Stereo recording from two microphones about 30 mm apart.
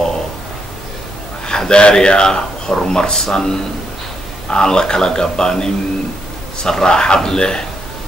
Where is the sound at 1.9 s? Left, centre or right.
Left.